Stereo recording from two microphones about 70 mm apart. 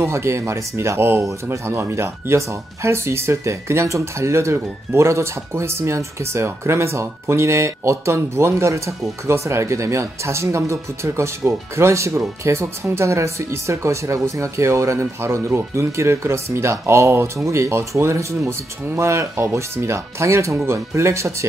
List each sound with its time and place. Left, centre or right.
0.0 s speech: right